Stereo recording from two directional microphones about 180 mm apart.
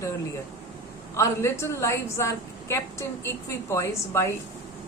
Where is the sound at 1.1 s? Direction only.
15° left (ahead or behind).